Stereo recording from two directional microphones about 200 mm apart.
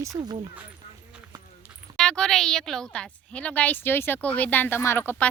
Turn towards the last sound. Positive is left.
turn(degrees=10)  # may be behind; listen again after turning